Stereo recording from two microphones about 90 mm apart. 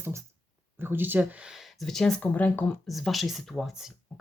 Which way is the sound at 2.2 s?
20° left (ahead or behind).